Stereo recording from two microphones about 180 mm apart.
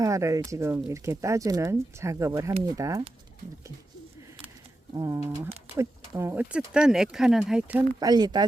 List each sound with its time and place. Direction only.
0.0 s speech: 15° right (ahead or behind)
4.9 s speech: 15° right (ahead or behind)
7.9 s speech: 20° right (ahead or behind)